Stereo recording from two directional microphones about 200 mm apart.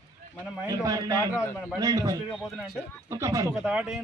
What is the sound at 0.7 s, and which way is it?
A man's voice, 20° right (ahead or behind).